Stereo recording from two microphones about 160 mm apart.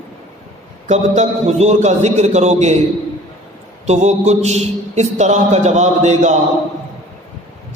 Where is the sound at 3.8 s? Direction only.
45° right (ahead or behind).